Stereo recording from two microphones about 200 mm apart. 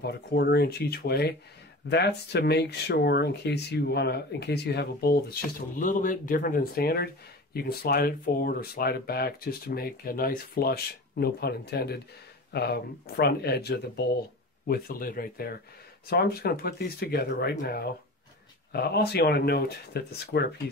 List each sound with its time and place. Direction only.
0.0 s speech: 55° left (ahead or behind)